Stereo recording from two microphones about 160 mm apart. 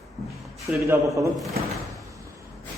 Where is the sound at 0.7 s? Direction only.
15° right (ahead or behind).